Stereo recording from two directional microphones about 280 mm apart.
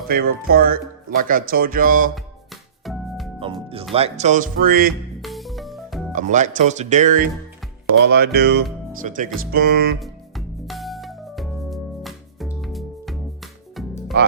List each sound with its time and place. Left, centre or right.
0.1 s speech: right
2.1 s music: centre
3.4 s speech: centre
5.2 s music: centre
6.1 s speech: right
10.0 s music: centre